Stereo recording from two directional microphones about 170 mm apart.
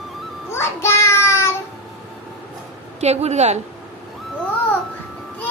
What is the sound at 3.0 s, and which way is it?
Speech, 40° right (ahead or behind).